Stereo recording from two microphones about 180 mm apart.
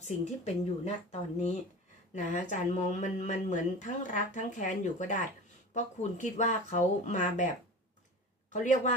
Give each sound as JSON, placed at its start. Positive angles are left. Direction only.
{"t": 0.0, "sound": "speech", "side_deg": 35}
{"t": 8.5, "sound": "a man's voice", "side_deg": 45}